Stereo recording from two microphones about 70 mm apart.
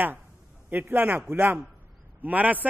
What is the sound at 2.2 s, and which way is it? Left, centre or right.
Speech, right.